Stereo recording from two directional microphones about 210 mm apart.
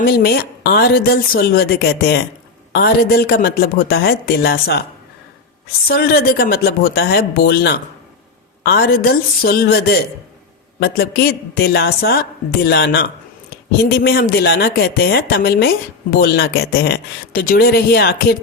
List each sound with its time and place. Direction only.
0.0 s a man's voice: 45° left (ahead or behind)
5.9 s a man's voice: 45° left (ahead or behind)